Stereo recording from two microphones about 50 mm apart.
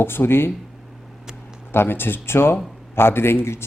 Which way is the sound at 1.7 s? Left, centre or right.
Left.